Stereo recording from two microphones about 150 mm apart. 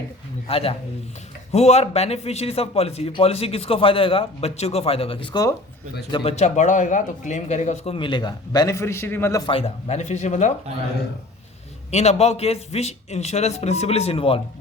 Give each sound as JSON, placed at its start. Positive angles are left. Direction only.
{"t": 0.4, "sound": "a man's voice", "side_deg": 40}
{"t": 6.3, "sound": "a man's voice", "side_deg": 50}
{"t": 7.9, "sound": "a man's voice", "side_deg": 30}
{"t": 9.5, "sound": "a man's voice", "side_deg": 40}
{"t": 11.9, "sound": "a man's voice", "side_deg": 50}